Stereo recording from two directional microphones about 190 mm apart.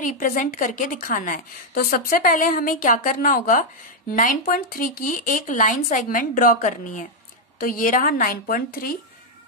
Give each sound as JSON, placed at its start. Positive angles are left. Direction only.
{"t": 0.0, "sound": "a woman's voice", "side_deg": 45}